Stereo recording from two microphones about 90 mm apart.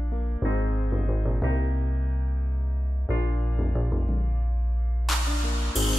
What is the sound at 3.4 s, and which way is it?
Music, 5° left (ahead or behind).